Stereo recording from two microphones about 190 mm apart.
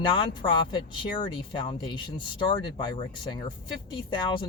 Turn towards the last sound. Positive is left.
turn(degrees=25)  # may be behind; listen again after turning